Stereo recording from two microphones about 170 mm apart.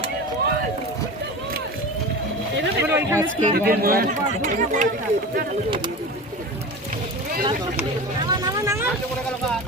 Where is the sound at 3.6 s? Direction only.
60° right (ahead or behind).